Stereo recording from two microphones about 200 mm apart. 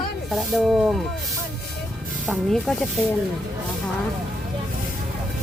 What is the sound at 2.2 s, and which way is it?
Speech, centre (ahead or behind).